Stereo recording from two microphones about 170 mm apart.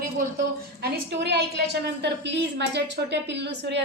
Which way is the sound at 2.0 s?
90° right.